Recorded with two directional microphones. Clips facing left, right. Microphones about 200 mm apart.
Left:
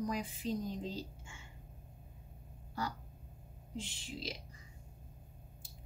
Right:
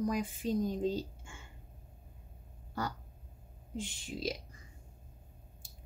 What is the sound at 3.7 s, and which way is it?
Speech, 50° right (ahead or behind).